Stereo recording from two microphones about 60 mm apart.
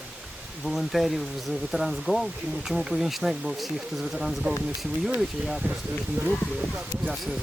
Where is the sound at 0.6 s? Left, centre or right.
Centre.